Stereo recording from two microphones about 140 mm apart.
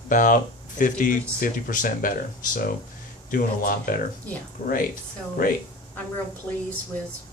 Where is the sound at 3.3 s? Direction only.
85° left.